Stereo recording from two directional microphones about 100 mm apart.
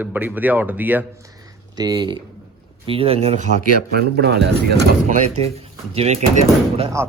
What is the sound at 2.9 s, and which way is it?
Speech, 75° right (ahead or behind).